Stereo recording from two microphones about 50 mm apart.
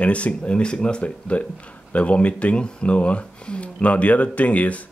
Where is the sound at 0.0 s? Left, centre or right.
Left.